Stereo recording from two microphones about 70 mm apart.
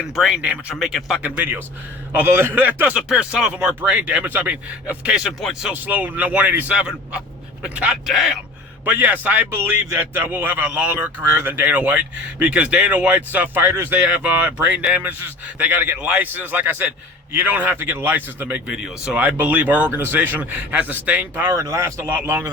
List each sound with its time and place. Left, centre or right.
0.0 s speech: centre
1.2 s a man's voice: right
2.9 s speech: centre
8.0 s speech: centre
8.8 s speech: right
18.7 s speech: centre
19.2 s speech: right
21.5 s speech: right
22.1 s speech: right